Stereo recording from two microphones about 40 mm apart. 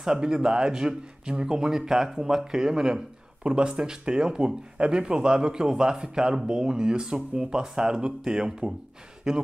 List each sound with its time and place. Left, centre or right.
0.0 s speech: centre